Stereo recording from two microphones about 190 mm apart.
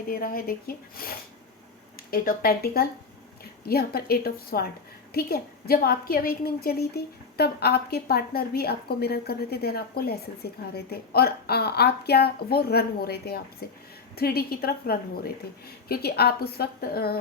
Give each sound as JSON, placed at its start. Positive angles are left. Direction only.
{"t": 0.1, "sound": "a woman's voice", "side_deg": 50}